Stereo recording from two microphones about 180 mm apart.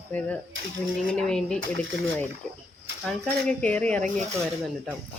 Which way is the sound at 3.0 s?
5° left (ahead or behind).